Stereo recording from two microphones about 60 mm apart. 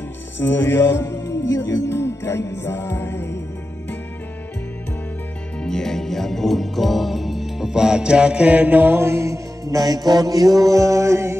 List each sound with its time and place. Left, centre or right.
0.4 s music: left
5.6 s music: centre; by 11.3 s right